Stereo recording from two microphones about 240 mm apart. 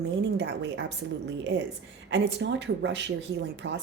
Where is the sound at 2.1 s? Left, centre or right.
Right.